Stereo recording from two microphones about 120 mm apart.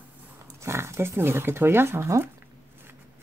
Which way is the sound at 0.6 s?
20° right (ahead or behind).